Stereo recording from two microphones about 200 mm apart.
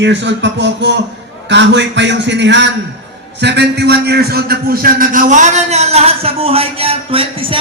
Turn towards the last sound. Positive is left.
turn(degrees=-25)  # may be behind; listen again after turning